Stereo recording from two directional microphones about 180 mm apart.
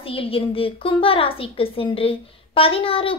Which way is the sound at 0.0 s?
30° left (ahead or behind).